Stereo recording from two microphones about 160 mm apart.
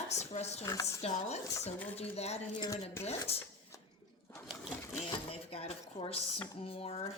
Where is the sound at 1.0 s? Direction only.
45° left (ahead or behind).